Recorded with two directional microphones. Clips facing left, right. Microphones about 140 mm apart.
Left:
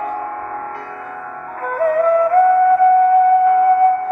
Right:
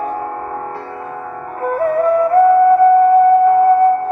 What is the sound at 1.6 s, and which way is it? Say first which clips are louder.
Music: right 1 dB; 25° right (ahead or behind).